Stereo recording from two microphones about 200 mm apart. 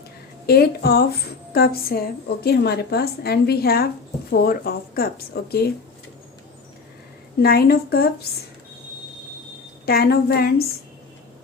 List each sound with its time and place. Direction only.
0.4 s a woman's voice: 50° left (ahead or behind)
7.4 s a woman's voice: 50° left (ahead or behind)
9.8 s a woman's voice: 50° left (ahead or behind)